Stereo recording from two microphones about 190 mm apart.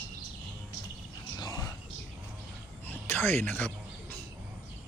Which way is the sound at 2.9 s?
10° left (ahead or behind).